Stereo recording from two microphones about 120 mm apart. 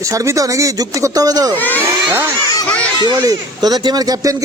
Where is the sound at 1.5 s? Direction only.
15° left (ahead or behind).